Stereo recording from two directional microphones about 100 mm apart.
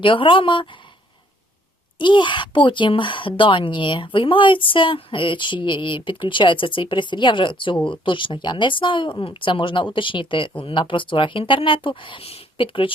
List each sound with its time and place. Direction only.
0.0 s speech: 60° left (ahead or behind)
2.0 s speech: 50° left (ahead or behind)